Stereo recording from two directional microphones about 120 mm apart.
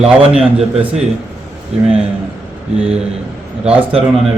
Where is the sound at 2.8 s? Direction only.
55° right (ahead or behind).